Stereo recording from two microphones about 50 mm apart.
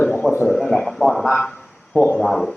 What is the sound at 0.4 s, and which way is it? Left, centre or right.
Speech, centre.